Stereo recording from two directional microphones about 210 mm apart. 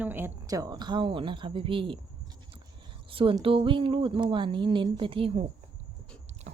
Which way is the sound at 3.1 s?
25° right (ahead or behind).